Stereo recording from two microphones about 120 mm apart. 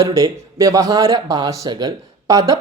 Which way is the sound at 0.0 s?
25° right (ahead or behind).